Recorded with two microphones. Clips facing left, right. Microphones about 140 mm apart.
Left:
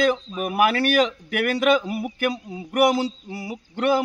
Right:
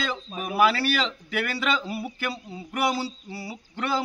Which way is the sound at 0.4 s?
55° left (ahead or behind).